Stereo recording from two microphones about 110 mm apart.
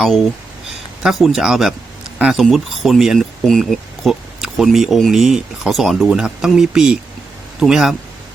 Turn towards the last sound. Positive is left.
turn(degrees=-5)  # may be behind; listen again after turning